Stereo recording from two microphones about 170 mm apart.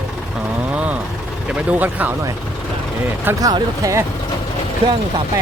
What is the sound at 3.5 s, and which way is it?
Speech, 20° right (ahead or behind).